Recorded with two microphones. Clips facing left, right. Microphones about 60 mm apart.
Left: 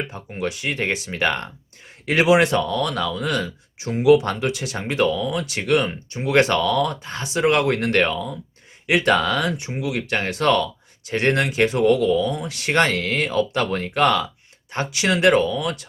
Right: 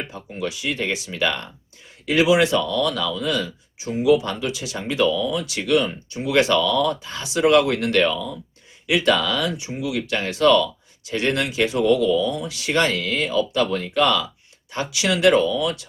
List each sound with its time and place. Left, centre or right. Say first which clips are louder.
0.1 s speech: left 1 dB; left